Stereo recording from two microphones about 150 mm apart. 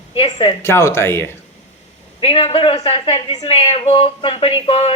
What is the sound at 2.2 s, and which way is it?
Speech, 40° left (ahead or behind).